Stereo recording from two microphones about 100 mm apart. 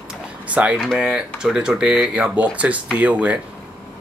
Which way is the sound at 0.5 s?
10° right (ahead or behind).